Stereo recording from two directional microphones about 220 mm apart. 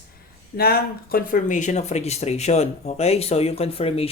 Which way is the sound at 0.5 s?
45° left (ahead or behind).